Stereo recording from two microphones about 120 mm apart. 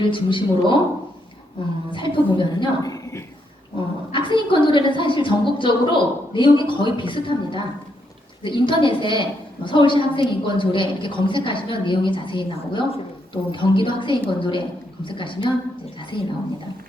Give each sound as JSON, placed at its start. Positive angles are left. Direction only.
{"t": 0.0, "sound": "a woman's voice", "side_deg": 45}
{"t": 1.9, "sound": "a woman's voice", "side_deg": 40}
{"t": 2.9, "sound": "a woman's voice", "side_deg": 25}
{"t": 4.1, "sound": "a woman's voice", "side_deg": 40}